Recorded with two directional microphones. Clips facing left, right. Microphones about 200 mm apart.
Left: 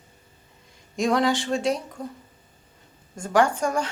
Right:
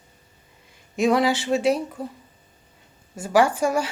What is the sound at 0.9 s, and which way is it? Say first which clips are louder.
A woman's voice: right 2 dB; 5° right (ahead or behind).